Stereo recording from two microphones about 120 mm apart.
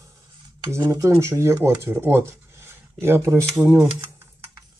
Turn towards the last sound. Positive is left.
turn(degrees=-15)  # may be behind; listen again after turning